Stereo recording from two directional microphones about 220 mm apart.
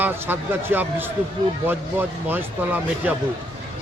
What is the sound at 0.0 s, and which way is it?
Speech, 10° right (ahead or behind).